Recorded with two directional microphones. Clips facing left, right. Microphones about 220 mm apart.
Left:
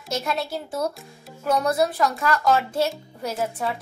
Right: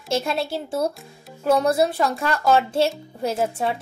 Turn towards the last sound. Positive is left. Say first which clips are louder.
# right 4 dB
turn(degrees=-30)  # may be behind; listen again after turning